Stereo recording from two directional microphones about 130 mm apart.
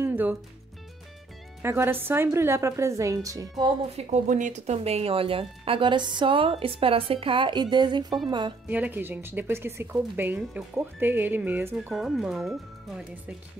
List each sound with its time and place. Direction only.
0.0 s music: 15° right (ahead or behind)
1.6 s a woman's voice: 20° right (ahead or behind)
3.9 s speech: 60° right (ahead or behind); by 8.5 s 35° right (ahead or behind)
8.6 s speech: 15° right (ahead or behind)
11.9 s speech: 5° right (ahead or behind)